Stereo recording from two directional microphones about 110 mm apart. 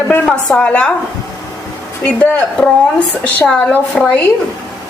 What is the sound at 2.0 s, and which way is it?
A woman's voice, 10° left (ahead or behind).